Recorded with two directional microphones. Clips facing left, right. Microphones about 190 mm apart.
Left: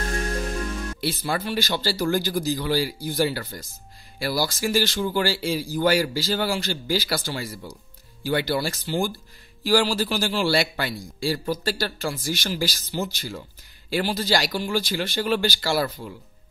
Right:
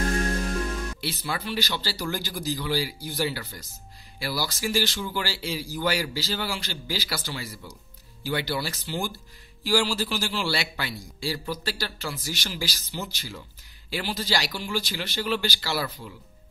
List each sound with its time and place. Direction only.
1.0 s a man's voice: 45° left (ahead or behind)
10.0 s a man's voice: 50° left (ahead or behind)